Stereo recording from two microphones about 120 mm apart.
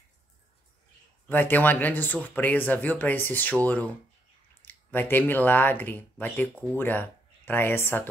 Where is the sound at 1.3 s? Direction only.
15° left (ahead or behind).